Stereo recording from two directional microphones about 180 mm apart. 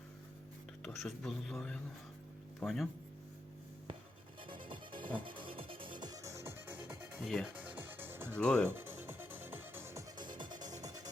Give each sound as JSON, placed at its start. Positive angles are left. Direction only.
{"t": 0.8, "sound": "speech", "side_deg": 0}
{"t": 4.4, "sound": "music", "side_deg": -25}
{"t": 8.4, "sound": "speech", "side_deg": 5}
{"t": 8.6, "sound": "music", "side_deg": -10}